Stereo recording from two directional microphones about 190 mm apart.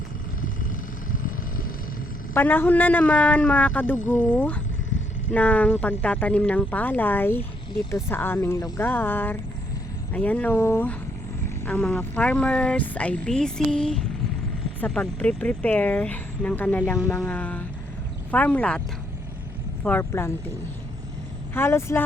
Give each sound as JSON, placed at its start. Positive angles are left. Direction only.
{"t": 1.1, "sound": "vehicle", "side_deg": 50}
{"t": 2.3, "sound": "speech", "side_deg": 10}
{"t": 3.9, "sound": "speech", "side_deg": 40}
{"t": 4.4, "sound": "speech", "side_deg": 10}
{"t": 19.8, "sound": "speech", "side_deg": 10}
{"t": 21.5, "sound": "speech", "side_deg": 15}